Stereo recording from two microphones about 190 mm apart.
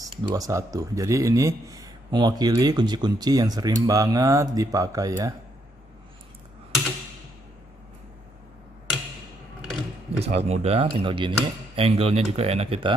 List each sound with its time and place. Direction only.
0.0 s speech: 20° right (ahead or behind)
10.1 s speech: 35° right (ahead or behind)